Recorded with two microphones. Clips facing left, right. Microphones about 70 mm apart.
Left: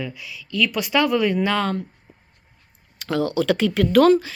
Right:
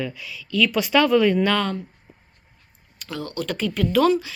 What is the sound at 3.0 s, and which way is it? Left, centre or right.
Speech, left.